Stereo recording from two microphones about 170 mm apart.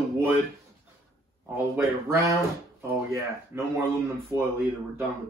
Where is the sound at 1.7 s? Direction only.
15° right (ahead or behind).